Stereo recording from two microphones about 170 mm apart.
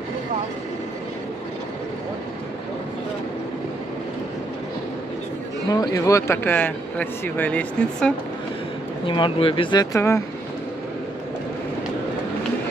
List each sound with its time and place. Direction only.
5.7 s speech: 20° left (ahead or behind)
9.0 s speech: 30° left (ahead or behind)
9.9 s speech: 15° left (ahead or behind)